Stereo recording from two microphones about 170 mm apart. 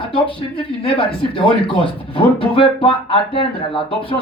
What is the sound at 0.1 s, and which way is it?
Speech, 30° left (ahead or behind).